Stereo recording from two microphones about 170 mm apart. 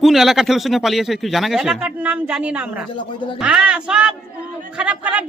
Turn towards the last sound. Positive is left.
turn(degrees=-10)  # may be behind; listen again after turning